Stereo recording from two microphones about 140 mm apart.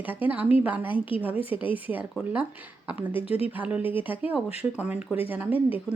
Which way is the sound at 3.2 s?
45° left (ahead or behind).